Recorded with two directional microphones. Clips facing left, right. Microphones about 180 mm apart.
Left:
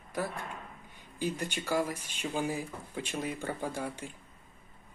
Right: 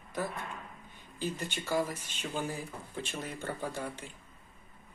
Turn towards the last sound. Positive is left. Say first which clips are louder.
# left 2 dB
turn(degrees=10)  # may be behind; listen again after turning